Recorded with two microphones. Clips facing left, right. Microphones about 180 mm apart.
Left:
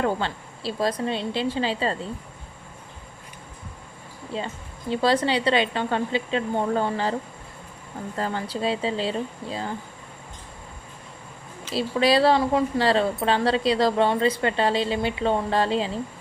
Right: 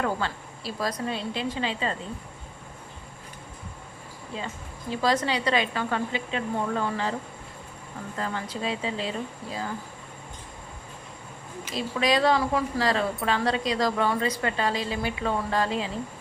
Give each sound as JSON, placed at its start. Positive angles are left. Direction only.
{"t": 0.0, "sound": "speech", "side_deg": 30}
{"t": 4.3, "sound": "speech", "side_deg": 30}
{"t": 11.7, "sound": "speech", "side_deg": 30}